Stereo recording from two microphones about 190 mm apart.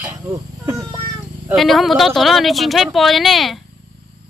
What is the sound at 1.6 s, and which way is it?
A woman's voice, centre (ahead or behind).